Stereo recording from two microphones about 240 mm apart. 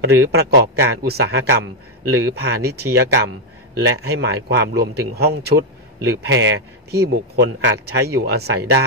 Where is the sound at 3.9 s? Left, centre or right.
Right.